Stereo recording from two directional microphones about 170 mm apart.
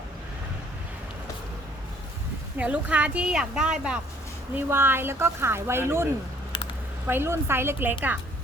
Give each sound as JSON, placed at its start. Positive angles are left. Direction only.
{"t": 2.6, "sound": "speech", "side_deg": -5}
{"t": 7.1, "sound": "speech", "side_deg": -15}